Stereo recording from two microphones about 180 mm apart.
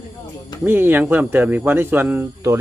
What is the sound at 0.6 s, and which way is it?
Speech, 10° right (ahead or behind).